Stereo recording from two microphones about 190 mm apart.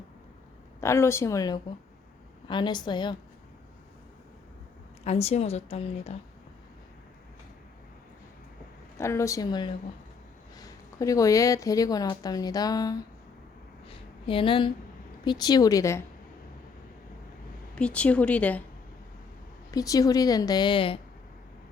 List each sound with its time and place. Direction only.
0.8 s speech: 15° left (ahead or behind)
5.0 s a woman's voice: 35° left (ahead or behind)
9.0 s speech: 15° left (ahead or behind)
13.8 s a sound: 30° left (ahead or behind)
15.2 s speech: 20° left (ahead or behind)
17.7 s speech: 5° left (ahead or behind)
19.7 s speech: 20° left (ahead or behind)